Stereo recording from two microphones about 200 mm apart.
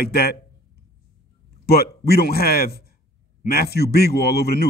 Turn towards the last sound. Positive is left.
turn(degrees=50)  # may be behind; listen again after turning